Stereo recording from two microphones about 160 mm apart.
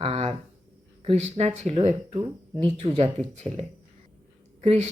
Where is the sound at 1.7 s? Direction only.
30° right (ahead or behind).